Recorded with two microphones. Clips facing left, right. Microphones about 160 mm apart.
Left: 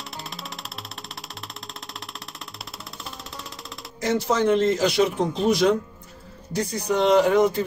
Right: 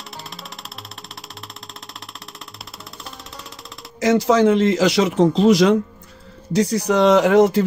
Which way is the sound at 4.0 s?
90° right.